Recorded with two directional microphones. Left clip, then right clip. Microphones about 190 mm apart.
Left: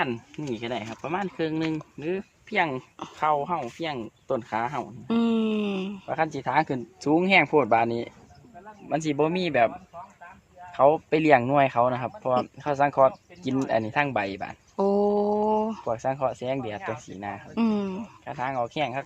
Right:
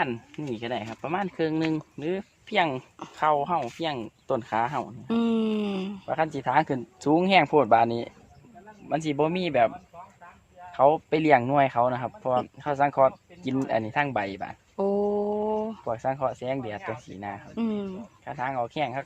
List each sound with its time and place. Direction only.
0.5 s speech: 15° right (ahead or behind); by 4.9 s 35° right (ahead or behind)
5.0 s a sound: 5° left (ahead or behind)
6.1 s speech: 30° right (ahead or behind)
8.9 s a man's voice: 10° right (ahead or behind)
14.8 s mantra: 15° left (ahead or behind)
15.8 s speech: 5° right (ahead or behind)
17.5 s speech: 20° left (ahead or behind)
18.3 s speech: 5° right (ahead or behind)